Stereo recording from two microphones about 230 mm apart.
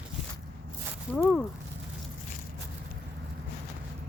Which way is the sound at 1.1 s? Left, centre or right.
Centre.